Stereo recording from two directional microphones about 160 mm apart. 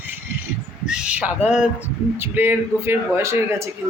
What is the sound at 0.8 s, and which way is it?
A man's voice, 5° right (ahead or behind).